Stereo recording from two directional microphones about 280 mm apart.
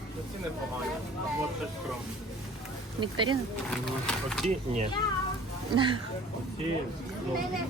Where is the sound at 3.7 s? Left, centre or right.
Centre.